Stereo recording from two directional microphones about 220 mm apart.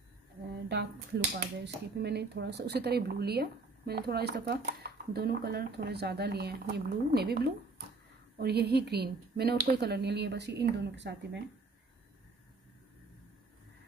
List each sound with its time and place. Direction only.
0.7 s speech: 50° right (ahead or behind)